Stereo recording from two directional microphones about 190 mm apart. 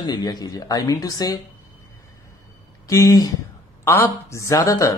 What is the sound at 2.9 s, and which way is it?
Speech, 20° left (ahead or behind).